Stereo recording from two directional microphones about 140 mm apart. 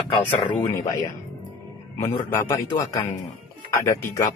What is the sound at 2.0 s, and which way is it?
Speech, 25° left (ahead or behind).